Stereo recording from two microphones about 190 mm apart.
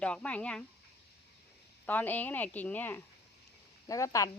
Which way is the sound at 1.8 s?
10° left (ahead or behind).